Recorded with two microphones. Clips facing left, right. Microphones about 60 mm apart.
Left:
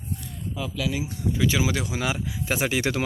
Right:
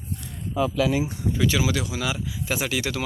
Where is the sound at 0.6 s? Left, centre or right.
Right.